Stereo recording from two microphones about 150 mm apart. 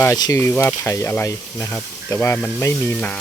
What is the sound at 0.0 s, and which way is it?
Speech, 20° left (ahead or behind).